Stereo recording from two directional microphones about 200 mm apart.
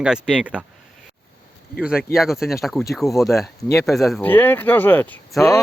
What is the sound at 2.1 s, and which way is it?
Speech, centre (ahead or behind).